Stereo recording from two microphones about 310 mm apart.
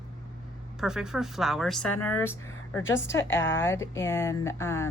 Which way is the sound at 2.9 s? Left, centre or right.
Centre.